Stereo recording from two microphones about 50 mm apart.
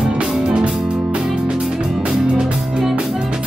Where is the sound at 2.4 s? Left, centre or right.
Centre.